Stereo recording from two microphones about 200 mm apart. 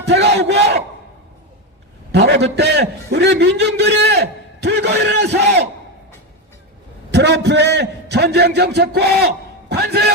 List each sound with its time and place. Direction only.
0.0 s battle cry: 60° right (ahead or behind)
2.1 s a man's voice: 60° right (ahead or behind)
7.1 s a man's voice: 60° right (ahead or behind)